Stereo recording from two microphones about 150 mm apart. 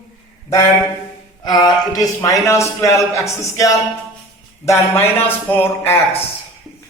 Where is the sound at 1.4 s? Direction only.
25° left (ahead or behind).